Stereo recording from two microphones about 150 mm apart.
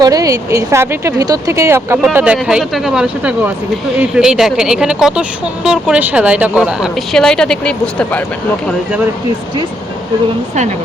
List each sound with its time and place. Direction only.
0.0 s speech: 25° right (ahead or behind)
2.0 s a woman's voice: 5° right (ahead or behind)